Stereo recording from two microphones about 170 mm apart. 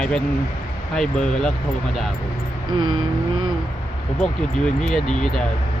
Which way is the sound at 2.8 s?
25° right (ahead or behind).